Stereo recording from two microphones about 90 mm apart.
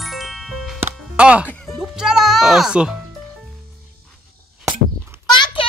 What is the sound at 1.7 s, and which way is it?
Music, 5° right (ahead or behind).